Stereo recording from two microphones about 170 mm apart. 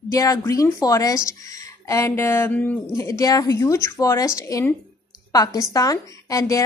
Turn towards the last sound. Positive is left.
turn(degrees=20)  # may be behind; listen again after turning